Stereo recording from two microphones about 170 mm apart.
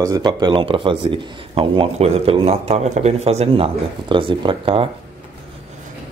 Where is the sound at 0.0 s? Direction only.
25° right (ahead or behind).